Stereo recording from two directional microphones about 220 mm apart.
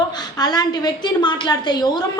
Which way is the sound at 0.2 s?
20° left (ahead or behind).